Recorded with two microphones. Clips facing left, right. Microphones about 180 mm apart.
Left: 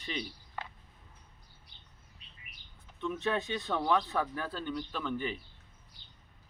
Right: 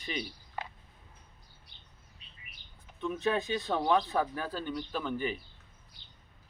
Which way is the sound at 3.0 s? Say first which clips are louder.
Right 2 dB; 15° right (ahead or behind).